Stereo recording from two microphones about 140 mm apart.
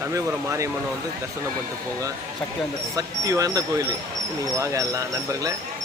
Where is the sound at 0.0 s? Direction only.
20° right (ahead or behind).